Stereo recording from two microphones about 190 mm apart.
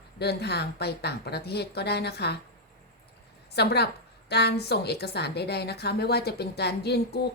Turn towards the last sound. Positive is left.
turn(degrees=60)  # may be behind; listen again after turning